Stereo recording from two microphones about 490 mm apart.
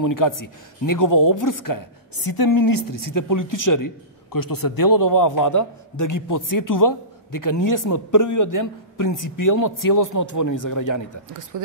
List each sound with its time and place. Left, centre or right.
0.0 s speech: left
11.5 s speech: right